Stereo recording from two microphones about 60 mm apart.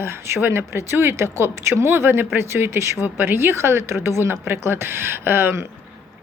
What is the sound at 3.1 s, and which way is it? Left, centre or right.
A woman's voice, right.